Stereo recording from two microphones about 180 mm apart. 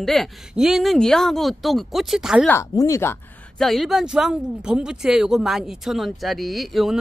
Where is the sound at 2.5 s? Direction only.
20° left (ahead or behind).